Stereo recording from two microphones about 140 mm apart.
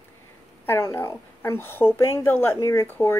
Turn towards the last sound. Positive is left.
turn(degrees=15)  # may be behind; listen again after turning